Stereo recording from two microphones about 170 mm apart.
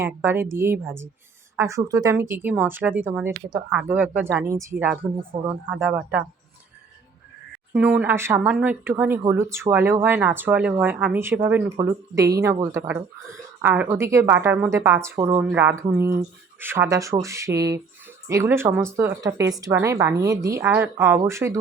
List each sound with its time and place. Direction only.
0.0 s speech: 15° right (ahead or behind)
7.7 s a woman's voice: 10° right (ahead or behind)